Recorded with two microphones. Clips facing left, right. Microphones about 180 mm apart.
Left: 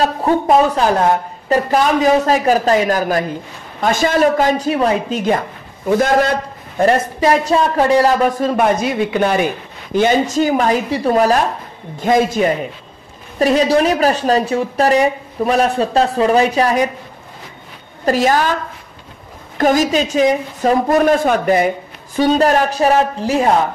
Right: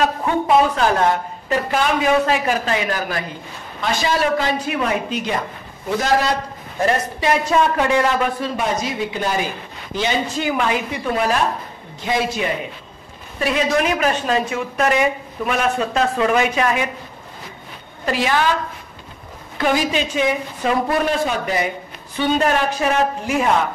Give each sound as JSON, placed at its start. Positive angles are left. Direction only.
{"t": 0.0, "sound": "a woman's voice", "side_deg": 35}
{"t": 9.9, "sound": "a woman's voice", "side_deg": 50}
{"t": 18.0, "sound": "speech", "side_deg": 40}
{"t": 19.6, "sound": "a woman's voice", "side_deg": 45}